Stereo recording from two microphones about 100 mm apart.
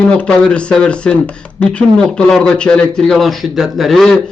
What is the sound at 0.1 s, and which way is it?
Speech, 10° left (ahead or behind).